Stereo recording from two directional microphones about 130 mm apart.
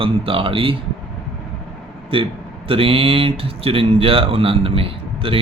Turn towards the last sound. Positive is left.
turn(degrees=-45)  # may be behind; listen again after turning